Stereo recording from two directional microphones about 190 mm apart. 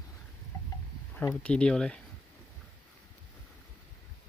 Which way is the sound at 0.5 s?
20° left (ahead or behind).